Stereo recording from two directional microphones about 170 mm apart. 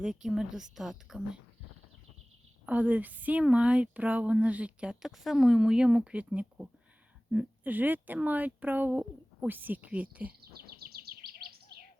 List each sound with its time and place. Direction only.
0.0 s a woman's voice: 5° right (ahead or behind)
2.6 s speech: 10° right (ahead or behind)
10.4 s bird vocalization: 65° right (ahead or behind)